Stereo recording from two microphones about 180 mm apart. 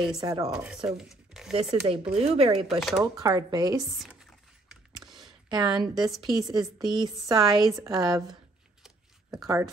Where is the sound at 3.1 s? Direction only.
20° right (ahead or behind).